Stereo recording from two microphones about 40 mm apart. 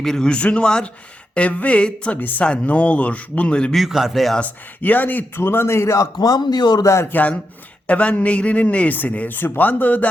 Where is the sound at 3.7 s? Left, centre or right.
Centre.